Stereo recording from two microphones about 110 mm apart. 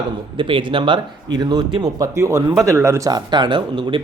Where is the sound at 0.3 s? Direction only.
50° right (ahead or behind).